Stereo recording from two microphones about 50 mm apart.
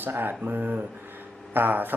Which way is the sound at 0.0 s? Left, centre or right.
Right.